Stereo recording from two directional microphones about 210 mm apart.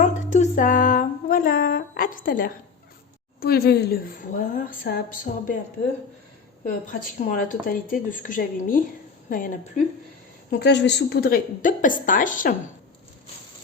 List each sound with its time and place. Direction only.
0.0 s a sound: 35° left (ahead or behind)
3.4 s a woman's voice: 50° left (ahead or behind)
6.7 s speech: 35° left (ahead or behind)
10.5 s speech: 55° left (ahead or behind)